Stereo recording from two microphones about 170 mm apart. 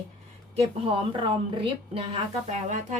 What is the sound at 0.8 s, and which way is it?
Speech, 30° right (ahead or behind).